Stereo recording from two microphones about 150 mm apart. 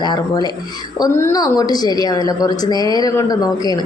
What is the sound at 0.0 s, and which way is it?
A woman's voice, 30° left (ahead or behind).